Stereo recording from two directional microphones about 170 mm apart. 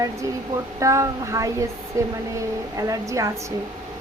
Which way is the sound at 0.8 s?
20° right (ahead or behind).